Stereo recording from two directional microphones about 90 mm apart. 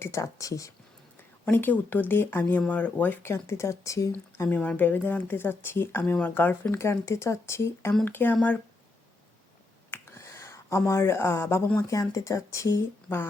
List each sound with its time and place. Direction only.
0.0 s speech: 35° left (ahead or behind)
1.5 s speech: 20° left (ahead or behind); by 4.1 s 40° left (ahead or behind)
4.4 s speech: 15° left (ahead or behind)
9.9 s a sound: 30° left (ahead or behind)
11.8 s speech: 40° left (ahead or behind)